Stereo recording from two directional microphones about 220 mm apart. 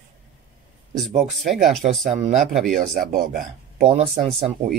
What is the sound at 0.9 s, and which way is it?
Speech, centre (ahead or behind).